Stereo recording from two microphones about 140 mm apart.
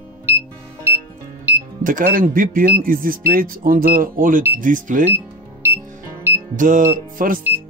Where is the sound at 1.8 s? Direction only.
75° right (ahead or behind).